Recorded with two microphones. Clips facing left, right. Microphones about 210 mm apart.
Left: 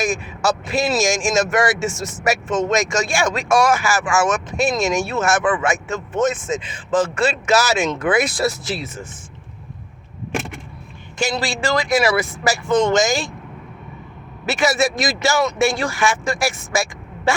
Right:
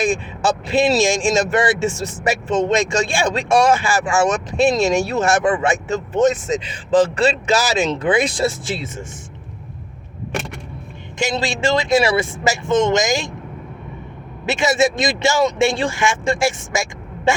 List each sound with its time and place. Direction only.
0.0 s a man's voice: 30° right (ahead or behind)
11.2 s speech: 25° right (ahead or behind)
14.4 s speech: 25° right (ahead or behind)